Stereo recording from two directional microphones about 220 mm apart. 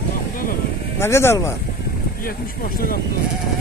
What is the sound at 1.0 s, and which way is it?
Speech, 10° left (ahead or behind).